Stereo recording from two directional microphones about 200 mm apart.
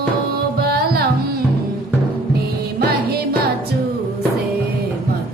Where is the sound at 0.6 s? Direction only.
50° right (ahead or behind).